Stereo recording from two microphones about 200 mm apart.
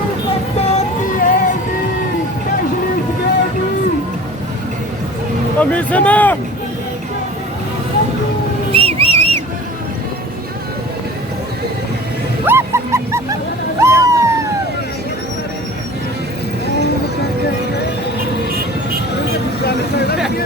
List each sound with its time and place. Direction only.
0.6 s vehicle: 35° left (ahead or behind)
5.5 s speech: 5° left (ahead or behind)
8.7 s whistle: 30° right (ahead or behind)
12.5 s dog: 10° right (ahead or behind)
13.7 s a sound: 15° right (ahead or behind)
19.6 s vehicle: 55° left (ahead or behind)